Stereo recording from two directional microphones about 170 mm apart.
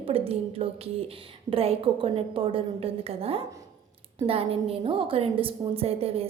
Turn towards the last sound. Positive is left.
turn(degrees=-35)  # may be behind; listen again after turning